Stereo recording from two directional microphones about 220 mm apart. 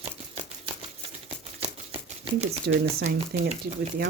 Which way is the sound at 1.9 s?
25° right (ahead or behind).